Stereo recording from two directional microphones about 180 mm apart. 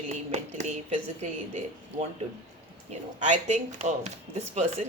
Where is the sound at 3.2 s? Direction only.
40° right (ahead or behind).